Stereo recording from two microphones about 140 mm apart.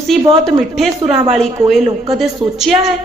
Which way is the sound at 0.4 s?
Centre (ahead or behind).